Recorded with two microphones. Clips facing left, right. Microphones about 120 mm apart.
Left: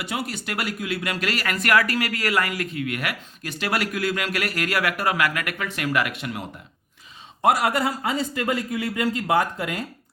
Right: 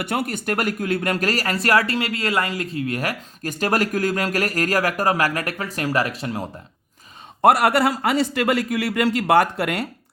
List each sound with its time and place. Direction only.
0.0 s speech: 55° right (ahead or behind); by 6.4 s 35° right (ahead or behind)
7.4 s a man's voice: 60° right (ahead or behind)